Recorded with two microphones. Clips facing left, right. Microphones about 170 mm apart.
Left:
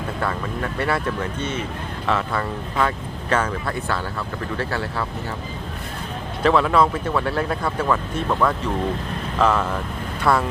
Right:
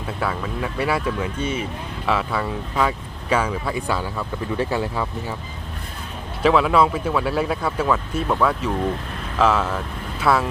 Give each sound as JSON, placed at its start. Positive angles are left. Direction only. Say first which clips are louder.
{"t": 0.2, "sound": "speech", "louder": "right 1 dB", "side_deg": -10}
{"t": 6.4, "sound": "speech", "louder": "right 1 dB", "side_deg": -10}